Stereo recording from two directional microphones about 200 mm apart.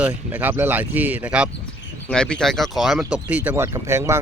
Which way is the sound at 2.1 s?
5° left (ahead or behind).